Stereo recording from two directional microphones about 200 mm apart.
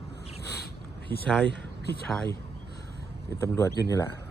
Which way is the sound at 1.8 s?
50° left (ahead or behind).